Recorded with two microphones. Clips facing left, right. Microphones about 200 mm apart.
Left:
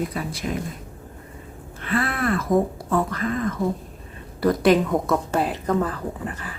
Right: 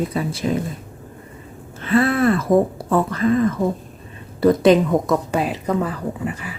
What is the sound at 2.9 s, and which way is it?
Speech, 30° right (ahead or behind).